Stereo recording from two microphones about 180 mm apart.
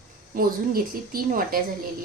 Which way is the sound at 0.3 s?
55° right (ahead or behind).